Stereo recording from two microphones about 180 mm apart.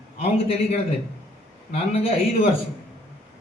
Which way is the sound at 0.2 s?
35° left (ahead or behind).